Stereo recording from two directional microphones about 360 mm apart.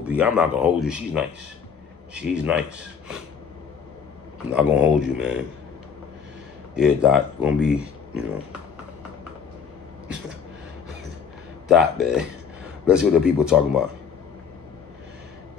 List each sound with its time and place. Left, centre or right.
0.0 s speech: centre
4.5 s speech: centre
6.7 s speech: centre
11.6 s speech: centre